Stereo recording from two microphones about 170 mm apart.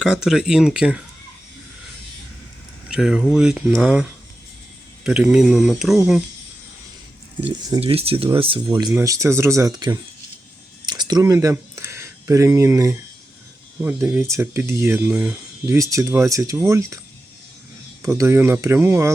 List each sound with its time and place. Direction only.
0.0 s speech: 5° right (ahead or behind)
2.9 s speech: 5° right (ahead or behind)
7.8 s speech: 35° right (ahead or behind)
8.9 s speech: 15° right (ahead or behind)
10.8 s a sound: 25° right (ahead or behind)
13.8 s speech: 15° right (ahead or behind)
18.0 s speech: 15° right (ahead or behind)